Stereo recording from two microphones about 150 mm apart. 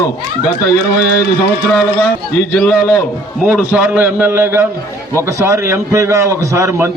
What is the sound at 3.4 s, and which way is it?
A man's voice, 15° right (ahead or behind).